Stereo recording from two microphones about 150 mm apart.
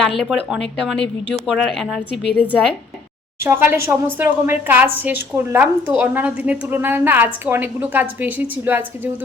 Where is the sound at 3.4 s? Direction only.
15° right (ahead or behind).